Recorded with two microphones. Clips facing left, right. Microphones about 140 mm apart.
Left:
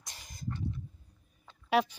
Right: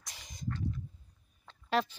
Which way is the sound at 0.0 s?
Centre (ahead or behind).